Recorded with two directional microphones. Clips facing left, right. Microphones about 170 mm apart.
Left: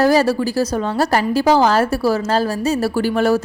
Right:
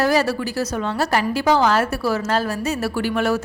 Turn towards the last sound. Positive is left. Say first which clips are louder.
# left 4 dB
turn(degrees=35)  # may be behind; listen again after turning